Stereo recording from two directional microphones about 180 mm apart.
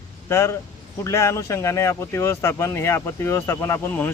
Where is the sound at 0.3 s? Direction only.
15° left (ahead or behind).